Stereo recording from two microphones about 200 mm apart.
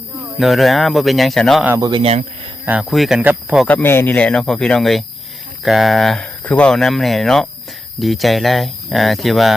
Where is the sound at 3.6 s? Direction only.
10° left (ahead or behind).